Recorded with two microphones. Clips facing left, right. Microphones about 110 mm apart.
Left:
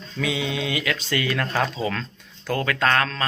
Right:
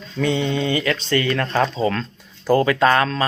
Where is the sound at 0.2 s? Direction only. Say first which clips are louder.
Right 6 dB; 5° left (ahead or behind).